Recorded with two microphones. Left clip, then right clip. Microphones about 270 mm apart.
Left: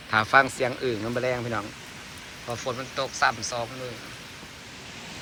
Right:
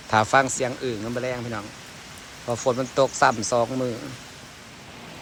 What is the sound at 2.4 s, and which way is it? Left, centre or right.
Speech, centre.